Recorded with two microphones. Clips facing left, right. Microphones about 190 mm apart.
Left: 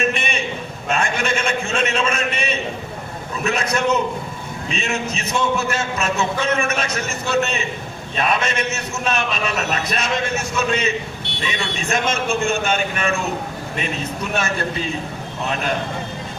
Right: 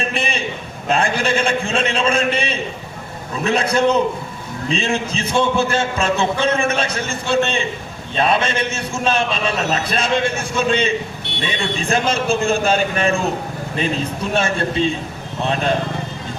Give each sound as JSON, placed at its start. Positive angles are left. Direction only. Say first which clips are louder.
{"t": 0.0, "sound": "a sound", "louder": "left 1 dB", "side_deg": -30}
{"t": 0.9, "sound": "a man's voice", "louder": "right 3 dB", "side_deg": -35}
{"t": 14.3, "sound": "a man's voice", "louder": "right 5 dB", "side_deg": -30}